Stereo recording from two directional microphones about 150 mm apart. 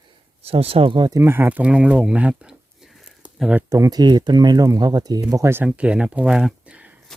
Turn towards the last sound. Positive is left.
turn(degrees=-10)  # may be behind; listen again after turning